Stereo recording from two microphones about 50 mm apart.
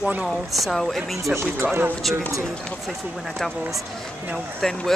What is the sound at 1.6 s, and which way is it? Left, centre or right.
Speech, right.